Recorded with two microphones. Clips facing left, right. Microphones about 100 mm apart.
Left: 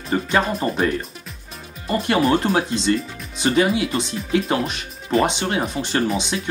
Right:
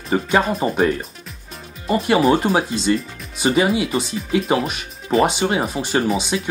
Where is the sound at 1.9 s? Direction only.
10° right (ahead or behind).